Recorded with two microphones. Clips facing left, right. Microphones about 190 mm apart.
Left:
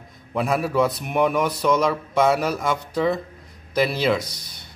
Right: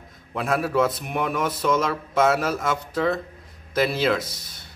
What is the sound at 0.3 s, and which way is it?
Speech, centre (ahead or behind).